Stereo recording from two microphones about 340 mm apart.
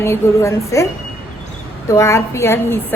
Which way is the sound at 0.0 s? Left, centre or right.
Centre.